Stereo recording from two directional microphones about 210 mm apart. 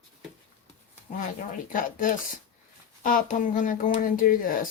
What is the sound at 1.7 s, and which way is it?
Speech, 40° left (ahead or behind).